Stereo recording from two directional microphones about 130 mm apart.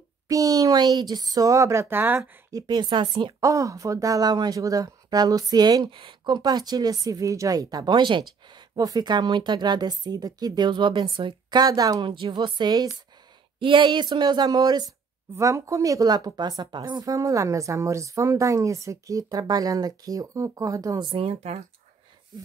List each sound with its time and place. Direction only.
0.3 s speech: 25° right (ahead or behind)
2.5 s speech: 35° right (ahead or behind)
21.1 s speech: 50° right (ahead or behind)